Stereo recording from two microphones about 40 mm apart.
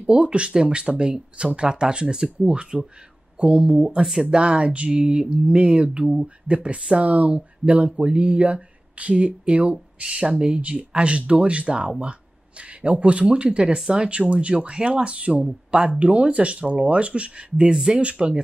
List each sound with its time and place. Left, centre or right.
0.0 s speech: right; by 4.3 s centre
4.3 s speech: right
7.1 s speech: right